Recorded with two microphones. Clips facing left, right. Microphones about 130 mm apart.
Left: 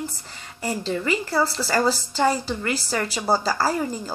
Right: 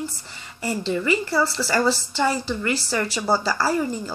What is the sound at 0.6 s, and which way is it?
Speech, 50° left (ahead or behind).